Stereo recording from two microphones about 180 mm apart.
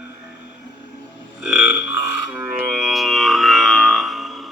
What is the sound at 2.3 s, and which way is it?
Music, 5° right (ahead or behind).